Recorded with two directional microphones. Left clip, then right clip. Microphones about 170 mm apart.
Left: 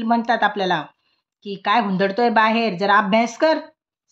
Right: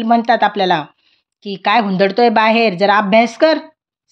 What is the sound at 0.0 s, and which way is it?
Speech, 30° right (ahead or behind).